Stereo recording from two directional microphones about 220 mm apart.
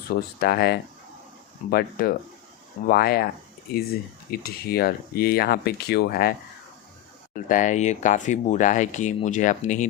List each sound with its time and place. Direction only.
0.1 s speech: 45° left (ahead or behind)
4.3 s speech: 45° left (ahead or behind)
7.3 s speech: 35° left (ahead or behind)